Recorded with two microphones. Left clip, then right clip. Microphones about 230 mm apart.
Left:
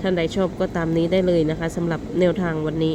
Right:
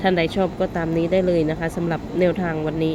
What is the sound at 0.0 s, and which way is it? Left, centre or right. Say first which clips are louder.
Speech: right 2 dB; centre.